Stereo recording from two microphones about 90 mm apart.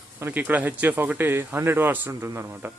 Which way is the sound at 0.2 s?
20° right (ahead or behind).